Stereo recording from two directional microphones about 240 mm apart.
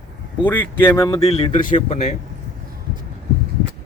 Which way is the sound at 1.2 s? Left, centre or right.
Left.